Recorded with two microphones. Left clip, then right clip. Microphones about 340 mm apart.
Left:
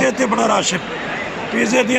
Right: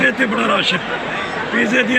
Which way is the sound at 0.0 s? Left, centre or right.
Centre.